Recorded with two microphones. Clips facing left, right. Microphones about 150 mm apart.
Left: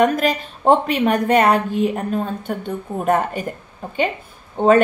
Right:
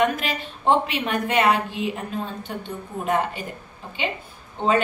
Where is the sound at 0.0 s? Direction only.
45° left (ahead or behind).